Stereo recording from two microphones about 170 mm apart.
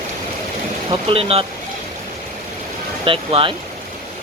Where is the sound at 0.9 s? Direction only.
35° right (ahead or behind).